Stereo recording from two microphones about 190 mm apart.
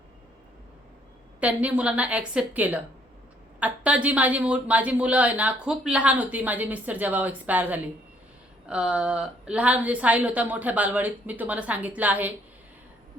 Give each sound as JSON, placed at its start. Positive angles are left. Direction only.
{"t": 1.4, "sound": "a woman's voice", "side_deg": -5}